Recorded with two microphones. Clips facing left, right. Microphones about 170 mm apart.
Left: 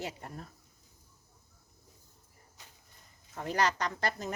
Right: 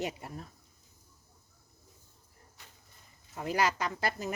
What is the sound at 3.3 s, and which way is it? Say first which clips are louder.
Speech: even; 5° right (ahead or behind).